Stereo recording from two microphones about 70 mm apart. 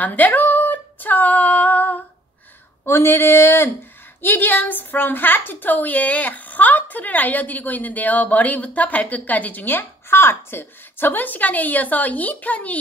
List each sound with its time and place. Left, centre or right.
0.0 s female singing: left
2.8 s a woman's voice: left